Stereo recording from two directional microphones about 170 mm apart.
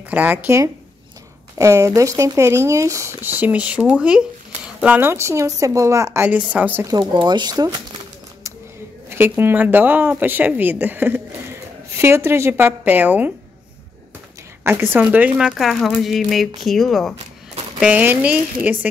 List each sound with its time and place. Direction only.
0.1 s speech: 10° right (ahead or behind)
6.9 s speech: 25° right (ahead or behind)
9.4 s speech: 10° right (ahead or behind)
14.6 s speech: 15° right (ahead or behind)